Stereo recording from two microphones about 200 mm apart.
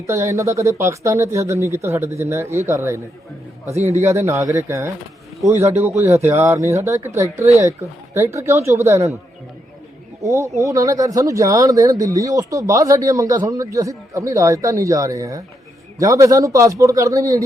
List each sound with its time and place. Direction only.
0.1 s speech: 15° right (ahead or behind)
10.2 s speech: 15° right (ahead or behind)